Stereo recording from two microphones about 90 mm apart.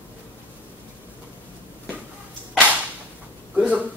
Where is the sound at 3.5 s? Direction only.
15° right (ahead or behind).